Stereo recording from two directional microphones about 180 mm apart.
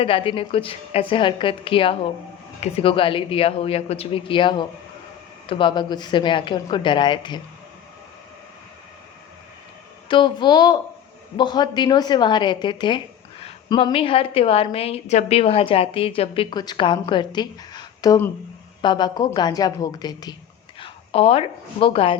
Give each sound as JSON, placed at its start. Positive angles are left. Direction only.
{"t": 0.0, "sound": "a woman's voice", "side_deg": 30}
{"t": 10.1, "sound": "a woman's voice", "side_deg": 25}